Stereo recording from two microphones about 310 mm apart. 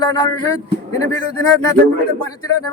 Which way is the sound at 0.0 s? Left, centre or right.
Centre.